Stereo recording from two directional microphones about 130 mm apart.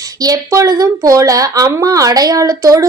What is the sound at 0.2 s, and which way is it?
Speech, 25° right (ahead or behind).